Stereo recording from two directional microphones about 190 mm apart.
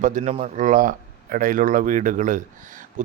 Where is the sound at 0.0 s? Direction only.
40° right (ahead or behind).